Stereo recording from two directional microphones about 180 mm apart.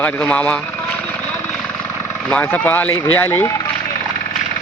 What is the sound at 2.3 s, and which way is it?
Speech, 10° left (ahead or behind).